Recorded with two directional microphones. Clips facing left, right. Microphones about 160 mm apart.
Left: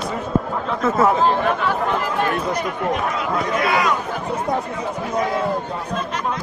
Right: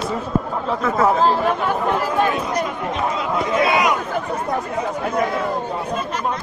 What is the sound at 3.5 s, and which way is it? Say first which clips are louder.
Speech: right 3 dB; 25° right (ahead or behind).